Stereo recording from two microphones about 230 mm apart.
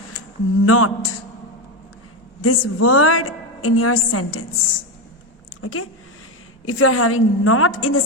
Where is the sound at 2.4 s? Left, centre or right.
Left.